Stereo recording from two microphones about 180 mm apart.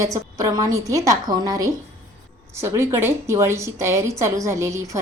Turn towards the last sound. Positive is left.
turn(degrees=-15)  # may be behind; listen again after turning